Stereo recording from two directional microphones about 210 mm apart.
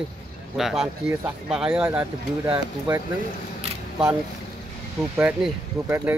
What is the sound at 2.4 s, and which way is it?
Speech, 15° right (ahead or behind).